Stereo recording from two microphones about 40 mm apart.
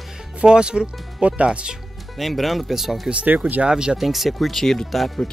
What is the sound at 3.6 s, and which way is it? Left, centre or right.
Speech, centre.